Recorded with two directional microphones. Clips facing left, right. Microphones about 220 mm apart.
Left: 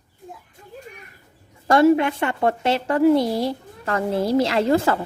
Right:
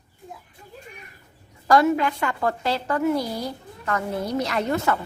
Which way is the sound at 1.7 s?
25° left (ahead or behind).